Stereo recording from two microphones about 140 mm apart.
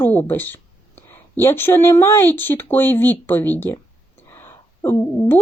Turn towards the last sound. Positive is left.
turn(degrees=15)  # may be behind; listen again after turning